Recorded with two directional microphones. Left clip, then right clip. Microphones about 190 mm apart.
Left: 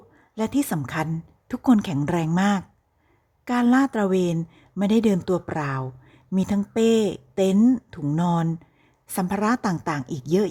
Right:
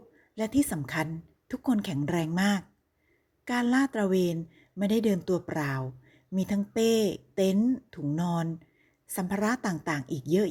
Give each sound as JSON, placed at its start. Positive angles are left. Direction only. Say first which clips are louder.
{"t": 0.3, "sound": "speech", "louder": "left 3 dB", "side_deg": 10}
{"t": 7.6, "sound": "speech", "louder": "left 8 dB", "side_deg": 20}
{"t": 8.1, "sound": "speech", "louder": "left 8 dB", "side_deg": 5}